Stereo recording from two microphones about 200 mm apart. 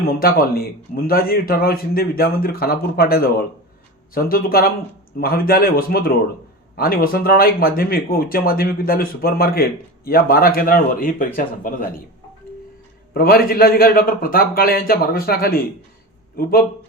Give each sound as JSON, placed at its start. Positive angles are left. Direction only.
{"t": 0.2, "sound": "speech", "side_deg": 50}
{"t": 13.1, "sound": "speech", "side_deg": 45}